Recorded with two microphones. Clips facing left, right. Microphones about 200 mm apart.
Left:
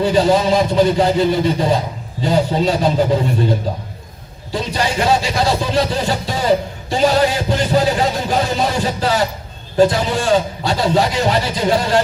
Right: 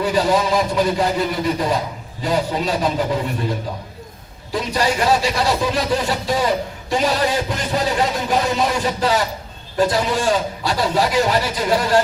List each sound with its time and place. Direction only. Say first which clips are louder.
0.0 s speech: left 4 dB; 25° left (ahead or behind)
4.5 s speech: even; 30° left (ahead or behind)